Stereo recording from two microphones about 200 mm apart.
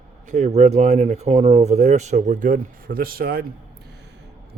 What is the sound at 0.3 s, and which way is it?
Speech, 35° right (ahead or behind).